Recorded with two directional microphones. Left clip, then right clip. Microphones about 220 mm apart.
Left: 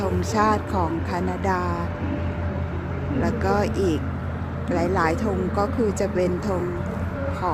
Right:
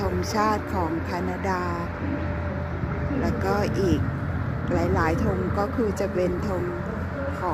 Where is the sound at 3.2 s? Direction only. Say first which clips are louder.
Left 3 dB; 5° left (ahead or behind).